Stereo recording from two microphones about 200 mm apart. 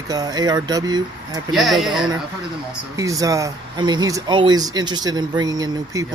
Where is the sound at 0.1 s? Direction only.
20° right (ahead or behind).